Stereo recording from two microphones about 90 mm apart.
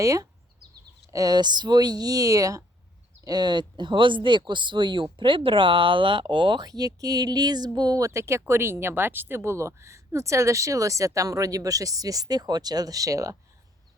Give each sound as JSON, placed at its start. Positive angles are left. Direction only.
{"t": 0.0, "sound": "speech", "side_deg": -40}
{"t": 3.2, "sound": "speech", "side_deg": -55}